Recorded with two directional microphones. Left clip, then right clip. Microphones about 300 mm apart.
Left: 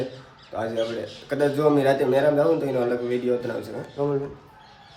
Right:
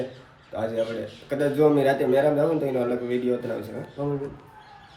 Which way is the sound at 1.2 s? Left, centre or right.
Centre.